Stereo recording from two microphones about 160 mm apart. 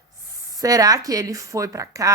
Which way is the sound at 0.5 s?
20° right (ahead or behind).